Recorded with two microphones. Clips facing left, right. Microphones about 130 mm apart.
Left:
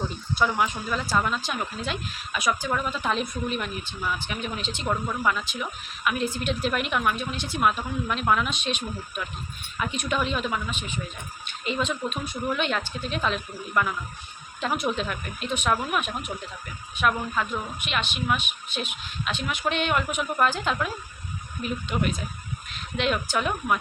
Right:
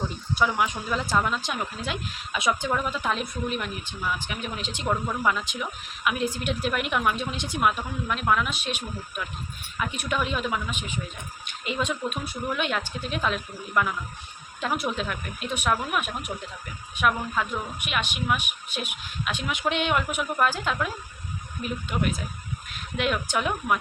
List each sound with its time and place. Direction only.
0.3 s speech: 5° right (ahead or behind)
0.7 s speech: 15° right (ahead or behind)
8.0 s speech: centre (ahead or behind)